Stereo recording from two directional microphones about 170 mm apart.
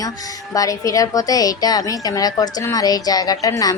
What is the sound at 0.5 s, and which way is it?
A woman's voice, 20° left (ahead or behind).